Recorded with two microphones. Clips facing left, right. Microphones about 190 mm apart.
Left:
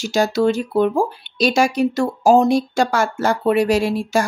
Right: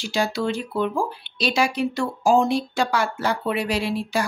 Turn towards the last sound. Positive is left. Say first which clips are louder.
# left 7 dB
turn(degrees=45)  # may be behind; listen again after turning